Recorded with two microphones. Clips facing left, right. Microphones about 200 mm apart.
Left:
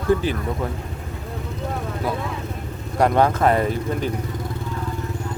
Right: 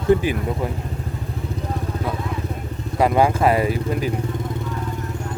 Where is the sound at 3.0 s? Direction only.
5° right (ahead or behind).